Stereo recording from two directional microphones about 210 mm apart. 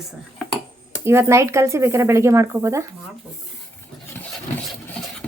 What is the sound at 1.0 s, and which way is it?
Speech, 10° right (ahead or behind).